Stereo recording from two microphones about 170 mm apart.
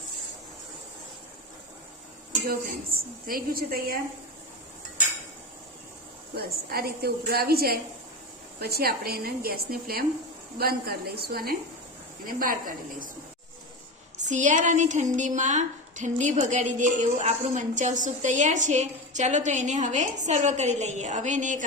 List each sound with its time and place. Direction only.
2.5 s a woman's voice: 60° right (ahead or behind)
6.3 s a woman's voice: 65° right (ahead or behind)
12.2 s a woman's voice: 55° right (ahead or behind)
14.2 s a woman's voice: 45° right (ahead or behind)